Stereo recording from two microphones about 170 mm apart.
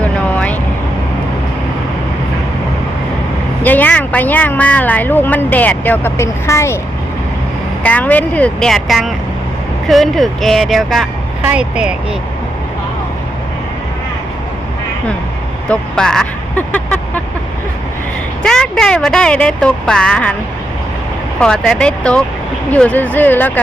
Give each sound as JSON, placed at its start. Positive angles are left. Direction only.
{"t": 0.0, "sound": "vehicle", "side_deg": 10}
{"t": 3.6, "sound": "a woman's voice", "side_deg": 10}
{"t": 7.9, "sound": "a woman's voice", "side_deg": 10}
{"t": 15.7, "sound": "speech", "side_deg": 5}
{"t": 18.4, "sound": "speech", "side_deg": 5}
{"t": 21.3, "sound": "a woman's voice", "side_deg": 5}